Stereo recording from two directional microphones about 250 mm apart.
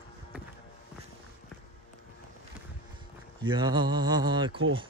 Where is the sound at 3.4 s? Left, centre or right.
Centre.